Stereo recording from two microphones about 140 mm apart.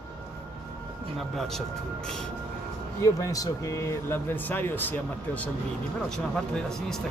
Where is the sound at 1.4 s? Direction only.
5° left (ahead or behind).